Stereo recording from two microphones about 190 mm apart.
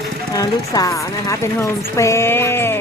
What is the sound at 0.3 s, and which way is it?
Speech, 20° left (ahead or behind).